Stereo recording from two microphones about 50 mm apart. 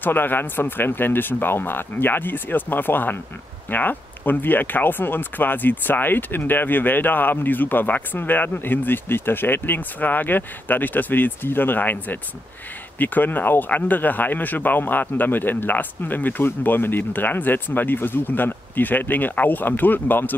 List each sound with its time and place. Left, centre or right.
0.0 s speech: left